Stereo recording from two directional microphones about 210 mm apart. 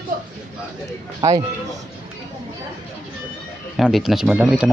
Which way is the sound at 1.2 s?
15° right (ahead or behind).